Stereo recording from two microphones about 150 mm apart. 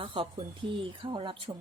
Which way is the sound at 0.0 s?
40° right (ahead or behind).